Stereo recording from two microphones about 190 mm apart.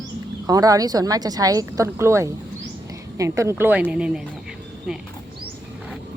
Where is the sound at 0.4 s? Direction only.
20° right (ahead or behind).